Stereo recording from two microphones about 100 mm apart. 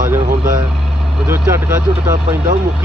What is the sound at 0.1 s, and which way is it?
Vehicle, 30° right (ahead or behind).